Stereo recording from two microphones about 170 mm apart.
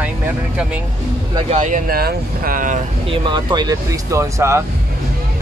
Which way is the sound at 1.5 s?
50° right (ahead or behind).